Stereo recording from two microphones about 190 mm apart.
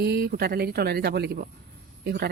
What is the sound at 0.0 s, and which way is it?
Speech, 55° right (ahead or behind).